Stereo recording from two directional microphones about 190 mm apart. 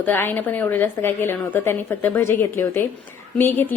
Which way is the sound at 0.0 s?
10° left (ahead or behind).